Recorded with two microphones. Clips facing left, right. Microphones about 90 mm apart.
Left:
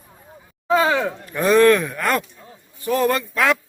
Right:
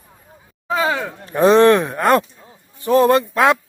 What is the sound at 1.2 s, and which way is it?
A man's voice, 30° right (ahead or behind).